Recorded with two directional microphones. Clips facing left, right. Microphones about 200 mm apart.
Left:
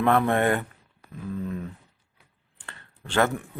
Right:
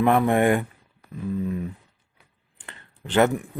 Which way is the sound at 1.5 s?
10° right (ahead or behind).